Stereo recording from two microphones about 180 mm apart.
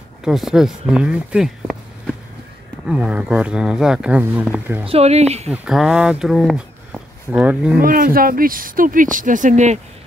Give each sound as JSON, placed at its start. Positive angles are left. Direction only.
{"t": 0.2, "sound": "speech", "side_deg": 0}
{"t": 4.8, "sound": "speech", "side_deg": -35}
{"t": 5.5, "sound": "speech", "side_deg": -5}
{"t": 7.8, "sound": "speech", "side_deg": -50}